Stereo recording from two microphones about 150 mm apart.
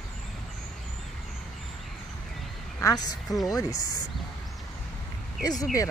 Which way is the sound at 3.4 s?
25° left (ahead or behind).